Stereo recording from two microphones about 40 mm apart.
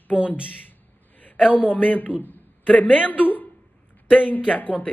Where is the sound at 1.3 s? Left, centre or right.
Left.